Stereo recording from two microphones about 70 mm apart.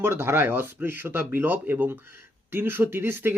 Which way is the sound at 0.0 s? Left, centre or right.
Right.